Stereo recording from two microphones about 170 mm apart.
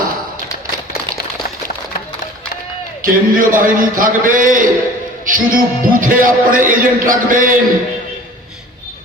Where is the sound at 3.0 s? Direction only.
55° right (ahead or behind).